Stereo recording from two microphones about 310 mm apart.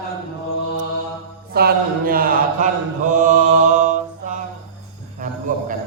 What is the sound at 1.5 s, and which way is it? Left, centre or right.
Speech, right.